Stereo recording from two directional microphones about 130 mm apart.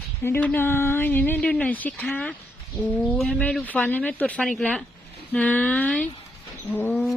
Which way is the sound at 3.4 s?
10° left (ahead or behind).